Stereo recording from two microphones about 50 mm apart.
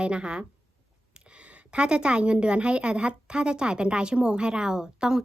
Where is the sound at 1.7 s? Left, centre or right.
Right.